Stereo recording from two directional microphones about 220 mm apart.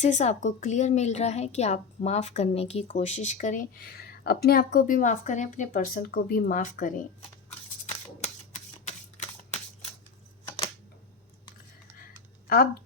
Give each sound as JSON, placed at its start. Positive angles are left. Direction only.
{"t": 0.0, "sound": "a woman's voice", "side_deg": 30}
{"t": 7.9, "sound": "shuffling cards", "side_deg": 30}